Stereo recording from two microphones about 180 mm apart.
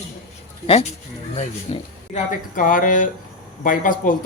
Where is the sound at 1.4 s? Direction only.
40° left (ahead or behind).